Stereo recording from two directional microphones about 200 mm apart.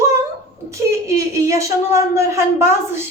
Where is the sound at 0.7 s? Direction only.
15° right (ahead or behind).